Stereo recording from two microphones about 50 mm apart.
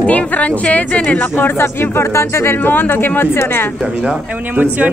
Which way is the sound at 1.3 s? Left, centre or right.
Left.